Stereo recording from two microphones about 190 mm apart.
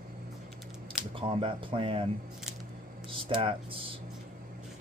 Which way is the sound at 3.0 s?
30° right (ahead or behind).